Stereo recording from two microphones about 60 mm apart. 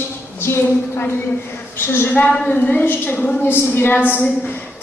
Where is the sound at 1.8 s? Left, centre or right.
Left.